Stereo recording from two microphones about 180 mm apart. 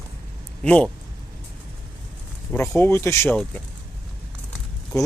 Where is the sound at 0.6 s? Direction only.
10° left (ahead or behind).